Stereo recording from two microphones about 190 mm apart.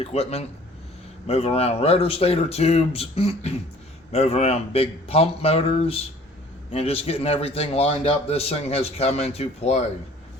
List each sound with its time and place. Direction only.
0.0 s a man's voice: 30° left (ahead or behind)